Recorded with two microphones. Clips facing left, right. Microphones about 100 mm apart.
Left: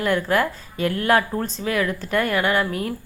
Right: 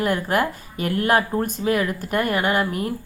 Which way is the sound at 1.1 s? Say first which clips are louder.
Even; 15° right (ahead or behind).